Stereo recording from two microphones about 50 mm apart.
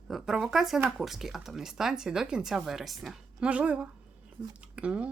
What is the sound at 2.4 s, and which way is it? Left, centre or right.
Speech, centre.